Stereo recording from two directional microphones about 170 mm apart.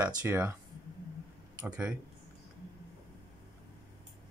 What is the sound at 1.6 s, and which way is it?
Speech, 10° right (ahead or behind).